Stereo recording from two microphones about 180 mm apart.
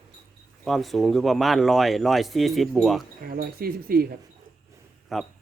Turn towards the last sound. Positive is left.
turn(degrees=0)  # may be behind; listen again after turning